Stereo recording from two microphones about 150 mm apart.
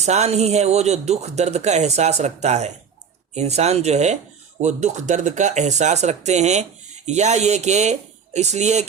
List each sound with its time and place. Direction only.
0.0 s speech: 45° right (ahead or behind)